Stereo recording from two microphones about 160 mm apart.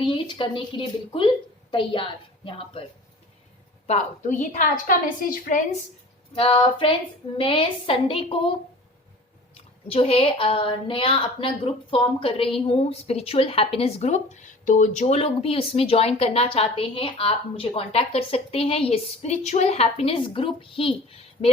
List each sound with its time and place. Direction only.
0.0 s a woman's voice: 30° left (ahead or behind)
3.8 s a woman's voice: 45° left (ahead or behind)
6.3 s a woman's voice: 35° left (ahead or behind)
9.6 s a woman's voice: 40° left (ahead or behind)